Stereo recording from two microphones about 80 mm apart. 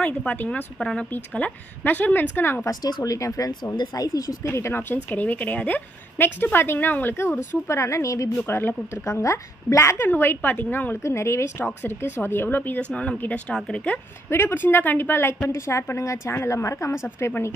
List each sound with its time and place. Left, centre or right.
0.0 s a woman's voice: centre
2.6 s speech: left
3.7 s speech: left
4.5 s a woman's voice: left
8.5 s a woman's voice: left
9.0 s a woman's voice: left
11.0 s a woman's voice: left; by 13.9 s centre
14.3 s a woman's voice: left